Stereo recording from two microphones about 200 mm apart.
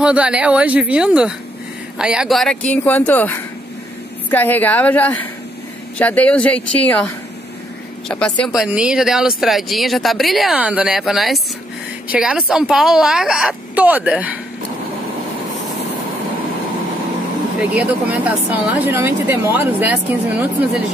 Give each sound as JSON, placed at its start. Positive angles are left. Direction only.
{"t": 0.0, "sound": "a woman's voice", "side_deg": -5}
{"t": 8.1, "sound": "a woman's voice", "side_deg": 5}
{"t": 17.6, "sound": "speech", "side_deg": -5}